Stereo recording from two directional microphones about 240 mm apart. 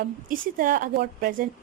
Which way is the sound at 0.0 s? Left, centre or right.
Right.